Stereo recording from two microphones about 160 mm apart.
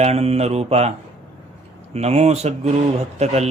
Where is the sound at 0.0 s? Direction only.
40° right (ahead or behind).